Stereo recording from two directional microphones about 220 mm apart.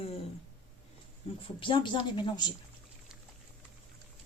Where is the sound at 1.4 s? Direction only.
25° left (ahead or behind).